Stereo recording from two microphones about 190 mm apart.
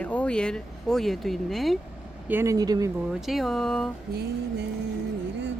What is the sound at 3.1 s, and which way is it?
Speech, centre (ahead or behind).